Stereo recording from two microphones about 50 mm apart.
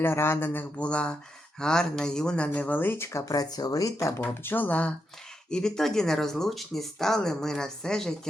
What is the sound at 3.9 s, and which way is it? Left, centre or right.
Speech, left.